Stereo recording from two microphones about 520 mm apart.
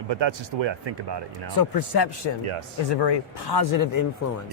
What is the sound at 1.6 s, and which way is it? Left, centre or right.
Speech, left.